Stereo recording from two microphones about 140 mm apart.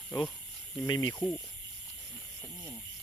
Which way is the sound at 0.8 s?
25° left (ahead or behind).